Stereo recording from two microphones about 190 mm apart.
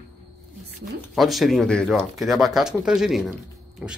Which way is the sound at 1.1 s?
Centre (ahead or behind).